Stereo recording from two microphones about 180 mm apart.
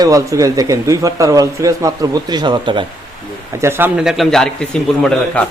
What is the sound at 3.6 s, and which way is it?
A man's voice, 10° right (ahead or behind).